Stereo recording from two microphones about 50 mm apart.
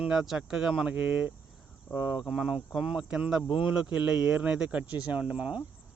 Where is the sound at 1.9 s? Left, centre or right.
Right.